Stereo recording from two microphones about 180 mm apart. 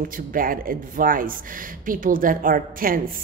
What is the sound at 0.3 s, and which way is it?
Speech, 50° right (ahead or behind).